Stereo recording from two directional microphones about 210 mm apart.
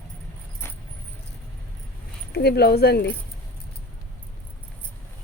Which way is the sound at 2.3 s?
50° left (ahead or behind).